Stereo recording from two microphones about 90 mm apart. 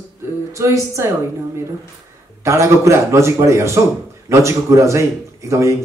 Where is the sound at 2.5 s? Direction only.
35° right (ahead or behind).